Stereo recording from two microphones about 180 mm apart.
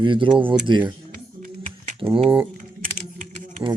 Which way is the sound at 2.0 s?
30° right (ahead or behind).